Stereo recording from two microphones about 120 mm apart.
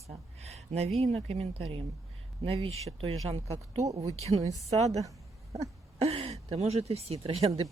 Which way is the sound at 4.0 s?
60° right (ahead or behind).